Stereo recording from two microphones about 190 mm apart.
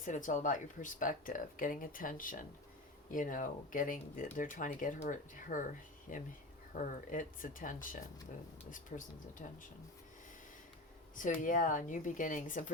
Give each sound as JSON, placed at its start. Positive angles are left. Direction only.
{"t": 0.0, "sound": "speech", "side_deg": 40}
{"t": 11.2, "sound": "speech", "side_deg": 45}